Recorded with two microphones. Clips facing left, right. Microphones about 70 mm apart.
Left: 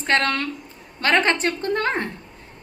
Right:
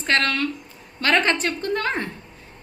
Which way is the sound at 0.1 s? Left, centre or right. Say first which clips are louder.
Even; left.